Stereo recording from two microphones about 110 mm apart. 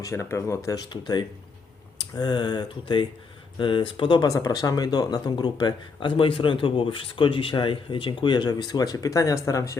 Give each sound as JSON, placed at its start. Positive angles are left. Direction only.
{"t": 0.0, "sound": "speech", "side_deg": 25}
{"t": 0.9, "sound": "speech", "side_deg": 40}
{"t": 4.3, "sound": "speech", "side_deg": 30}